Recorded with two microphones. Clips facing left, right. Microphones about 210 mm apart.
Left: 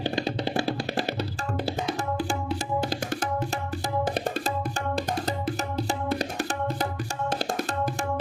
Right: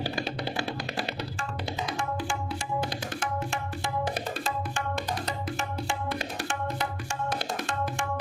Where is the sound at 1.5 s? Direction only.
45° left (ahead or behind).